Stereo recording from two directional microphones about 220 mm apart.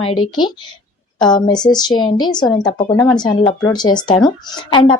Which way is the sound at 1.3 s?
20° left (ahead or behind).